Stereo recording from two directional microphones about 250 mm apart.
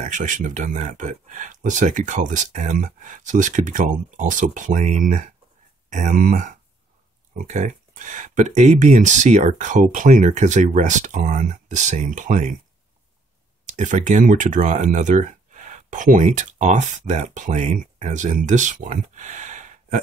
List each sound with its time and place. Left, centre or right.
0.0 s speech: right
13.7 s speech: right
19.1 s gasp: right